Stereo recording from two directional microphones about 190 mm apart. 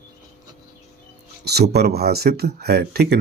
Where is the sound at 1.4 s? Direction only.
60° right (ahead or behind).